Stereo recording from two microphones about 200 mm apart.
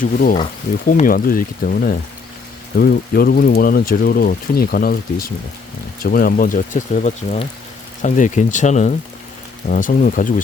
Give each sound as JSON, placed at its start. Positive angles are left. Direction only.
{"t": 0.0, "sound": "speech", "side_deg": 45}
{"t": 6.0, "sound": "speech", "side_deg": 45}